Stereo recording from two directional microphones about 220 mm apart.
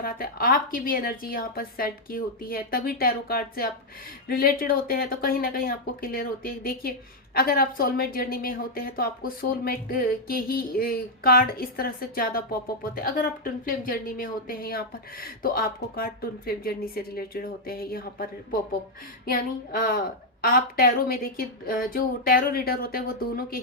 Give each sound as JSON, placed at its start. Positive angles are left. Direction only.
{"t": 0.0, "sound": "a woman's voice", "side_deg": 40}